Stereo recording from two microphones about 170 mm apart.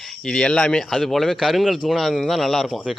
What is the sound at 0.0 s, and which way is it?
Speech, 5° left (ahead or behind).